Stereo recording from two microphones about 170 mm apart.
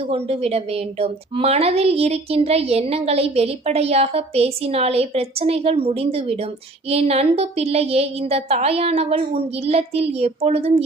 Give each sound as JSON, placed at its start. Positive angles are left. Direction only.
{"t": 0.1, "sound": "a woman's voice", "side_deg": -35}